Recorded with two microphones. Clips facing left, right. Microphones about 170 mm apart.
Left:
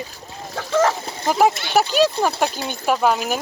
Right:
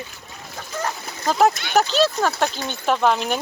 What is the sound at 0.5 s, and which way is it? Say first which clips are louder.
Vehicle: left 10 dB; 90° left.